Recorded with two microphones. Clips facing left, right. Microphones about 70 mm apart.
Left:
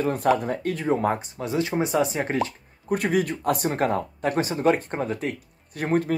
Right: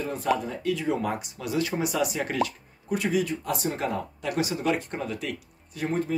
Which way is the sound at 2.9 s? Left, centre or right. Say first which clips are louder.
Left 3 dB; left.